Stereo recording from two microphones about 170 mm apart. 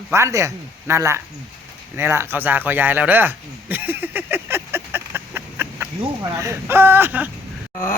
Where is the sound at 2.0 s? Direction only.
15° right (ahead or behind).